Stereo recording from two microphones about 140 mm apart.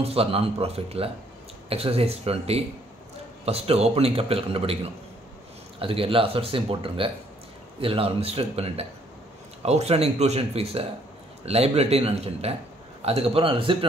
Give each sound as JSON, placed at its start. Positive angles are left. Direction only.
{"t": 0.0, "sound": "speech", "side_deg": -45}
{"t": 5.8, "sound": "speech", "side_deg": -40}